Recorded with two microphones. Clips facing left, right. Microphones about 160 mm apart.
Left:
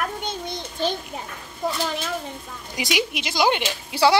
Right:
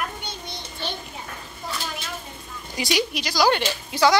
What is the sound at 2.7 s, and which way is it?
Speech, 20° left (ahead or behind).